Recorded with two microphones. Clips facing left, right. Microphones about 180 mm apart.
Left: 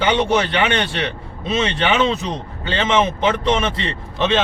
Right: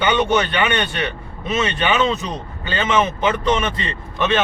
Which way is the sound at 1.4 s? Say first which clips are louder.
Left 1 dB; 25° left (ahead or behind).